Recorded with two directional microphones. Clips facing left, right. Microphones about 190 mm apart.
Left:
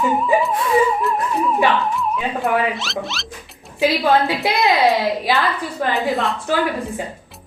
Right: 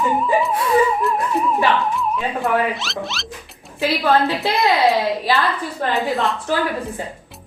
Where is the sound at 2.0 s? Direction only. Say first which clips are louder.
Even; centre (ahead or behind).